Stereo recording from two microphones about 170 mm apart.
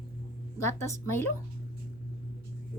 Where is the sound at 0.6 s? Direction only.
15° left (ahead or behind).